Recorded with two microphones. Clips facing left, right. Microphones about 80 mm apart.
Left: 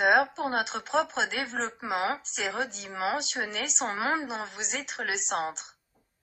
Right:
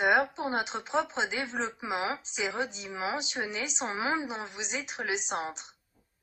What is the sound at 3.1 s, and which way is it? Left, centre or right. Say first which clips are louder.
A woman's voice: left 1 dB; centre.